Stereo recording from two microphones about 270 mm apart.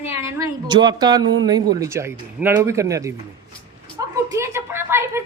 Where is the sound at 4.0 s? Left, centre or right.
Centre.